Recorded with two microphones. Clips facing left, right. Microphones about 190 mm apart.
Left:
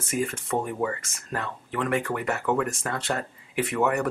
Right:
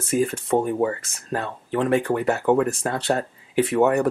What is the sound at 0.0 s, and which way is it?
Speech, 35° right (ahead or behind).